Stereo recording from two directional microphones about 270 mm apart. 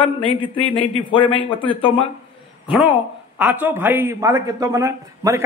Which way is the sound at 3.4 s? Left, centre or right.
Centre.